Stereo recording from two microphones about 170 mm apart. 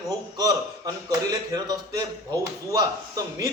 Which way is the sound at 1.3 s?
25° right (ahead or behind).